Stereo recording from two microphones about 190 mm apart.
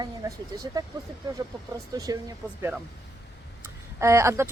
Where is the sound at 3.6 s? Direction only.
15° right (ahead or behind).